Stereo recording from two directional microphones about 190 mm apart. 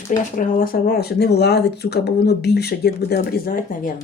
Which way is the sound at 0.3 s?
50° left (ahead or behind).